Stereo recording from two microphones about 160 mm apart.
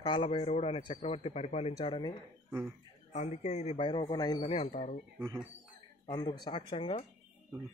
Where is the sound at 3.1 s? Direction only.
45° left (ahead or behind); by 4.4 s 25° left (ahead or behind).